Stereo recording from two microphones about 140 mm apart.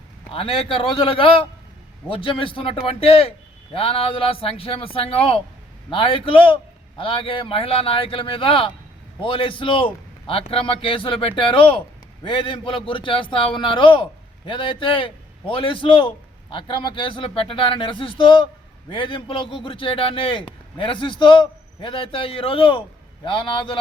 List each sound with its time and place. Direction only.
0.3 s a man's voice: 40° left (ahead or behind)